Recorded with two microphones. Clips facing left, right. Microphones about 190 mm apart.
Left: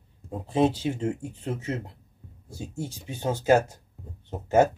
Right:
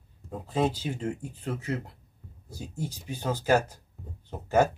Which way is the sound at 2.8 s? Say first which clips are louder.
Left 2 dB; 25° left (ahead or behind).